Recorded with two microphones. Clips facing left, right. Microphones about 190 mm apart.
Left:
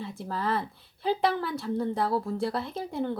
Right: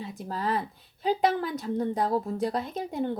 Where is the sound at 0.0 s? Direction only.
20° right (ahead or behind).